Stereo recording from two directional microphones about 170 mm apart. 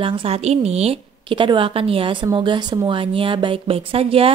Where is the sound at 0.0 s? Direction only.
30° right (ahead or behind).